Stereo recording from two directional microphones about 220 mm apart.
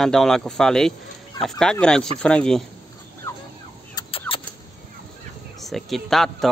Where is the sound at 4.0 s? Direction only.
25° left (ahead or behind).